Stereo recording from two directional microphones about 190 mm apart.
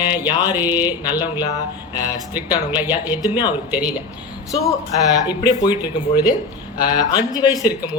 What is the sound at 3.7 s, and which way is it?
Speech, 5° right (ahead or behind).